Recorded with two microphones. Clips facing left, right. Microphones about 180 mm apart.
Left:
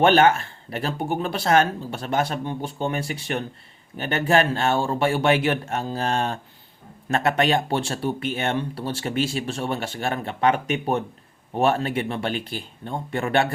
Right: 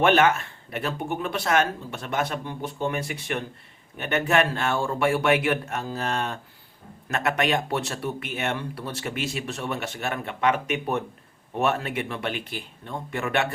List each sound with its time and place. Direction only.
0.0 s a man's voice: 30° left (ahead or behind)